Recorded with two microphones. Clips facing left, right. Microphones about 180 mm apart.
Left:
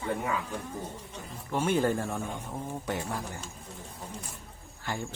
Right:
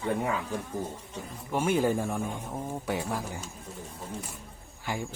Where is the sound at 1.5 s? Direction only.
10° right (ahead or behind).